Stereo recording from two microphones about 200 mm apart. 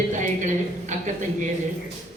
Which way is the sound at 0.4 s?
40° right (ahead or behind).